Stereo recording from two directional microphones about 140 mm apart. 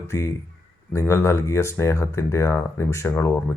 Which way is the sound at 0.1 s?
20° left (ahead or behind).